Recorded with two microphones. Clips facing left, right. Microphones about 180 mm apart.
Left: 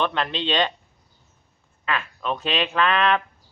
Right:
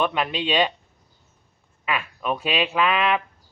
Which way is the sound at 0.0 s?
10° right (ahead or behind).